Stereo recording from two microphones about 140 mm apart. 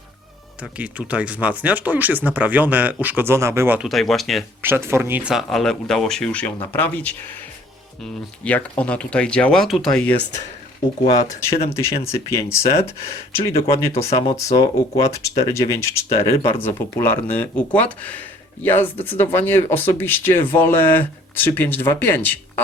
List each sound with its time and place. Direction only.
0.6 s speech: 10° right (ahead or behind)
3.8 s speech: centre (ahead or behind)
4.6 s speech: 15° right (ahead or behind)
5.3 s speech: centre (ahead or behind)
8.4 s speech: 10° left (ahead or behind)
11.0 s speech: 25° left (ahead or behind)